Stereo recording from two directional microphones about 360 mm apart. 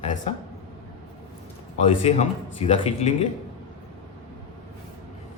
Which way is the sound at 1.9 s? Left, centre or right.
Centre.